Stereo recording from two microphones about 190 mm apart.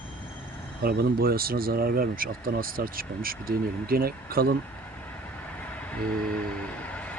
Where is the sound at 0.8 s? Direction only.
50° right (ahead or behind).